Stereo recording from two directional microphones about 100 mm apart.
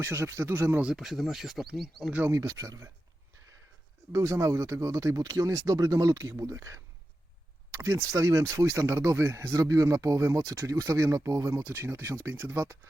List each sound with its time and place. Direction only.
0.0 s speech: 25° right (ahead or behind)
0.8 s speech: 5° right (ahead or behind)
2.3 s speech: 30° right (ahead or behind)
4.1 s speech: 30° right (ahead or behind)